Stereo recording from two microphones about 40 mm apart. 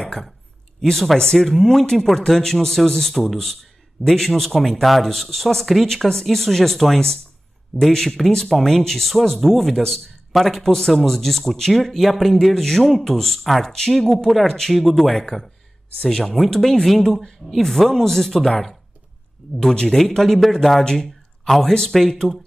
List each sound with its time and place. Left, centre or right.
0.7 s speech: centre
19.7 s speech: centre
20.0 s speech: centre
20.8 s speech: centre